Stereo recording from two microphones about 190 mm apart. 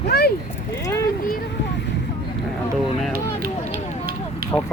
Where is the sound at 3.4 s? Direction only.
50° right (ahead or behind).